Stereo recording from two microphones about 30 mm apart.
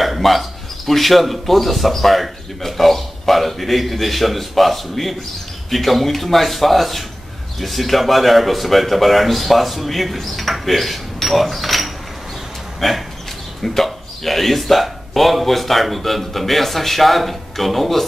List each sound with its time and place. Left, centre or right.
0.0 s a man's voice: centre